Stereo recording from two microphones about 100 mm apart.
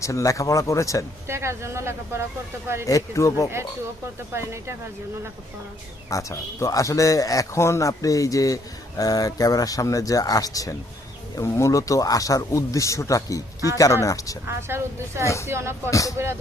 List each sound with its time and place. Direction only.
0.0 s a man's voice: 35° left (ahead or behind)
1.3 s speech: 25° right (ahead or behind)
2.8 s a man's voice: 35° left (ahead or behind)
4.4 s speech: 30° right (ahead or behind)
6.1 s a man's voice: 35° left (ahead or behind)
14.7 s speech: 25° right (ahead or behind)
15.2 s speech: 30° left (ahead or behind)
15.4 s speech: 25° right (ahead or behind)
15.9 s a man's voice: 35° left (ahead or behind)